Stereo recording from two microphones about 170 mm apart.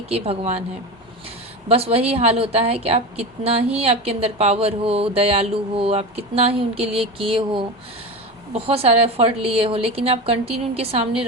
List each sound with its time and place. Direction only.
0.1 s speech: 35° right (ahead or behind)
1.6 s speech: 35° right (ahead or behind)